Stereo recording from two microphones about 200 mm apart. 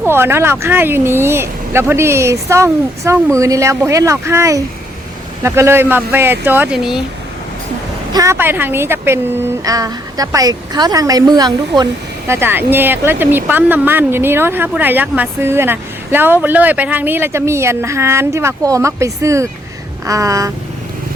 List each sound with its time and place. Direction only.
0.0 s speech: 10° right (ahead or behind)
8.1 s a woman's voice: 15° right (ahead or behind)